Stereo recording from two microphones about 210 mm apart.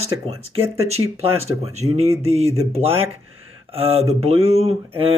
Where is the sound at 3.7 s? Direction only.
25° right (ahead or behind).